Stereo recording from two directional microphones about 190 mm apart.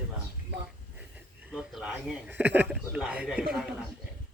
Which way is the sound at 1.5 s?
Centre (ahead or behind).